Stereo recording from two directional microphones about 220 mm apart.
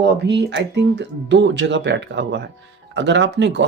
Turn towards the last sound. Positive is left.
turn(degrees=-50)  # may be behind; listen again after turning